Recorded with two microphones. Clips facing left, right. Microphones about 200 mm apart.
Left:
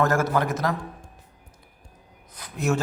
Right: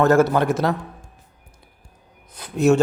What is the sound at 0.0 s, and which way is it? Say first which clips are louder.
Speech: right 6 dB; 25° right (ahead or behind).